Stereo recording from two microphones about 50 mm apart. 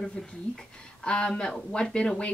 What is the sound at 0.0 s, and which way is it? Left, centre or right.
A woman's voice, centre.